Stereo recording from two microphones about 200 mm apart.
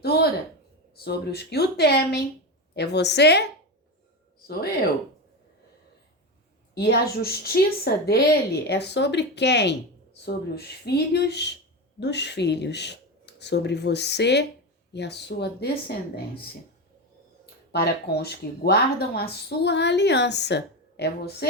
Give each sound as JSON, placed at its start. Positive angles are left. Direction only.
{"t": 1.0, "sound": "speech", "side_deg": 55}
{"t": 6.7, "sound": "speech", "side_deg": 55}
{"t": 17.4, "sound": "speech", "side_deg": 55}